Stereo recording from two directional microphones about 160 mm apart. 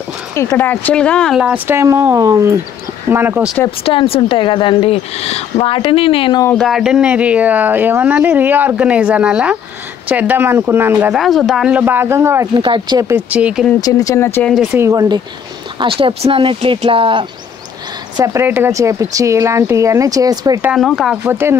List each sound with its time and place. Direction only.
0.4 s speech: 15° left (ahead or behind); by 3.5 s 10° right (ahead or behind)
3.8 s speech: 35° left (ahead or behind)
6.6 s speech: 5° right (ahead or behind)
11.1 s speech: centre (ahead or behind); by 12.6 s 15° right (ahead or behind)
12.6 s speech: 30° right (ahead or behind)
13.1 s speech: 10° right (ahead or behind)
13.7 s speech: 25° left (ahead or behind)
14.7 s speech: 15° right (ahead or behind)
18.1 s speech: 20° right (ahead or behind)
20.6 s speech: centre (ahead or behind)
21.2 s speech: 15° right (ahead or behind)